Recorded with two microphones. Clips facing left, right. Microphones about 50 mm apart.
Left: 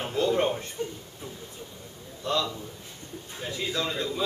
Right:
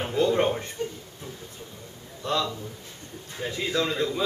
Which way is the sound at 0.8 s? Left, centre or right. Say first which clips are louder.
Left 1 dB; centre.